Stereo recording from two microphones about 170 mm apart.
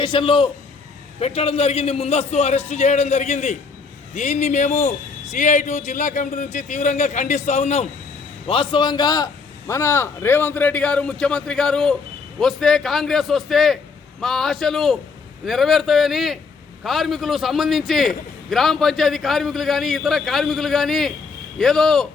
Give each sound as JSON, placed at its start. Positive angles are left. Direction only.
{"t": 0.0, "sound": "a man's voice", "side_deg": 30}
{"t": 8.4, "sound": "a man's voice", "side_deg": 30}